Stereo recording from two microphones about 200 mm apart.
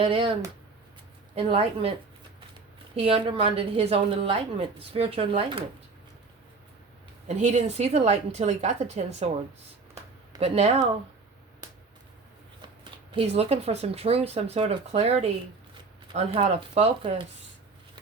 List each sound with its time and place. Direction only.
0.0 s a woman's voice: 25° right (ahead or behind)
1.4 s a woman's voice: 30° right (ahead or behind)
2.9 s a woman's voice: 30° right (ahead or behind)
7.3 s speech: 35° right (ahead or behind)
10.3 s speech: 30° right (ahead or behind)
12.8 s speech: 25° right (ahead or behind)